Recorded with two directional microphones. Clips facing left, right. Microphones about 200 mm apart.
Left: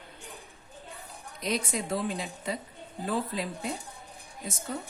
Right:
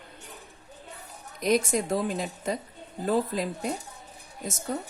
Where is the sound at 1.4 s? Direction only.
45° right (ahead or behind).